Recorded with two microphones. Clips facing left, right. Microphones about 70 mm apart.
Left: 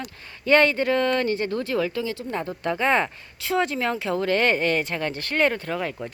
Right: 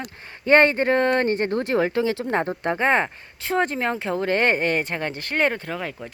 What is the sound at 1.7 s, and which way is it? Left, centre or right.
Speech, right.